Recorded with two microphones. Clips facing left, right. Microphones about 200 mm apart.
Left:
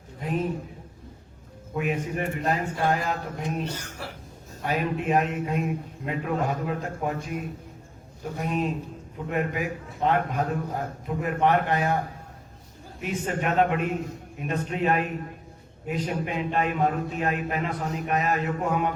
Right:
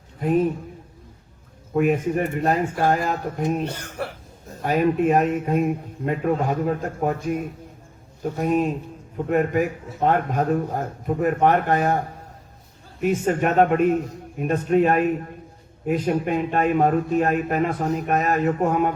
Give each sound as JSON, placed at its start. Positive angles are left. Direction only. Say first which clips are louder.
{"t": 1.7, "sound": "a man's voice", "louder": "right 8 dB", "side_deg": -50}
{"t": 13.0, "sound": "a man's voice", "louder": "right 8 dB", "side_deg": -45}